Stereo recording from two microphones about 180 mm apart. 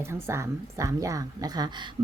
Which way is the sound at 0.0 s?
15° right (ahead or behind).